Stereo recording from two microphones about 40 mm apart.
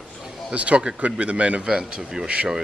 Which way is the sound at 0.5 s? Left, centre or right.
Right.